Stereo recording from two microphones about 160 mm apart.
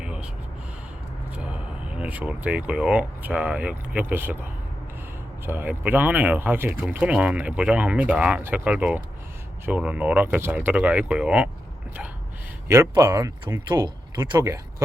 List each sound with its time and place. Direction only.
0.0 s a sound: 5° right (ahead or behind)
1.9 s speech: 10° right (ahead or behind)
5.5 s speech: 10° right (ahead or behind)
12.6 s speech: 15° right (ahead or behind)